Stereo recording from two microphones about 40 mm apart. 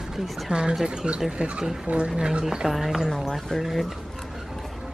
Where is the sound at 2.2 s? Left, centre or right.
Centre.